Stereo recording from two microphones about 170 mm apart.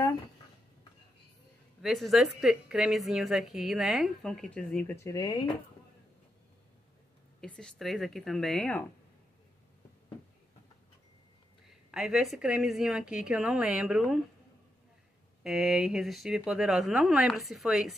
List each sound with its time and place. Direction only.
1.8 s a woman's voice: centre (ahead or behind)
4.9 s speech: 20° left (ahead or behind)
7.3 s a woman's voice: 5° left (ahead or behind)
11.6 s a woman's voice: centre (ahead or behind)
15.4 s a woman's voice: 5° right (ahead or behind)